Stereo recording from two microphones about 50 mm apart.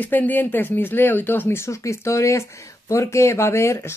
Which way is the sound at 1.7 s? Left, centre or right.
Left.